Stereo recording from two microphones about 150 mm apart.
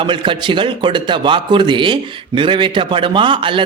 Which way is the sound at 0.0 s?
35° right (ahead or behind).